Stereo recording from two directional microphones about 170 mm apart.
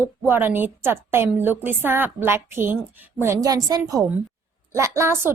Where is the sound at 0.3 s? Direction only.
10° right (ahead or behind).